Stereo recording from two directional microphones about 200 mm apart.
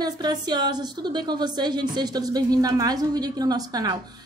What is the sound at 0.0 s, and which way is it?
A woman's voice, 20° right (ahead or behind).